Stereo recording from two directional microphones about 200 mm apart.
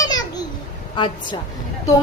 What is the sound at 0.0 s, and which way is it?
Babbling, 20° left (ahead or behind).